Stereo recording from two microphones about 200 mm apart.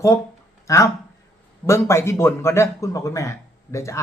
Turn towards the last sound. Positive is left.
turn(degrees=15)  # may be behind; listen again after turning